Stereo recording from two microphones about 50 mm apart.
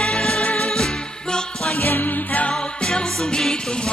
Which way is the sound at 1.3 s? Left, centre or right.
Centre.